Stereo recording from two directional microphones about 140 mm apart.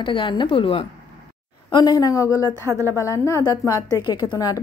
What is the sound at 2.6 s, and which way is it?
Speech, 20° right (ahead or behind).